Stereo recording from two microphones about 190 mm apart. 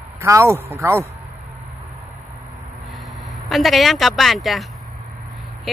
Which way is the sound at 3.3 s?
Centre (ahead or behind).